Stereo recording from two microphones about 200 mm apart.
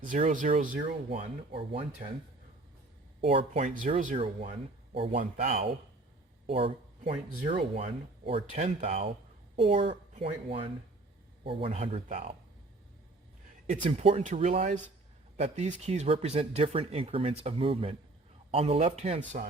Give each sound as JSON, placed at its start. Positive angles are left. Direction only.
{"t": 0.0, "sound": "speech", "side_deg": -40}
{"t": 3.2, "sound": "speech", "side_deg": -30}
{"t": 7.3, "sound": "speech", "side_deg": -45}
{"t": 7.8, "sound": "speech", "side_deg": -25}
{"t": 13.7, "sound": "speech", "side_deg": -35}